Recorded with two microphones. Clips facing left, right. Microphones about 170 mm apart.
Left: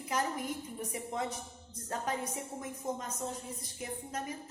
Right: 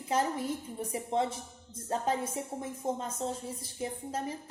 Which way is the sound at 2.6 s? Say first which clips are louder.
Right 4 dB; 30° right (ahead or behind).